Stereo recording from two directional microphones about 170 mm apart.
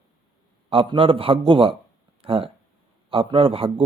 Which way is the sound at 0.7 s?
30° right (ahead or behind).